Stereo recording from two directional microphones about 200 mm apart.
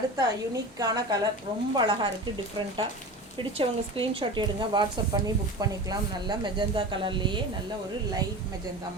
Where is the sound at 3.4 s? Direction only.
25° right (ahead or behind).